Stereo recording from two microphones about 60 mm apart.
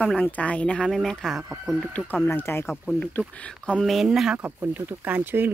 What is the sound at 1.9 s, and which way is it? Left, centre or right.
Speech, left.